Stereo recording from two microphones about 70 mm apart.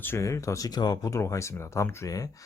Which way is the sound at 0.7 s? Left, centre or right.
Left.